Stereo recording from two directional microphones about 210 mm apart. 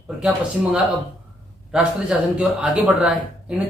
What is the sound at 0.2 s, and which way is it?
Speech, 5° right (ahead or behind).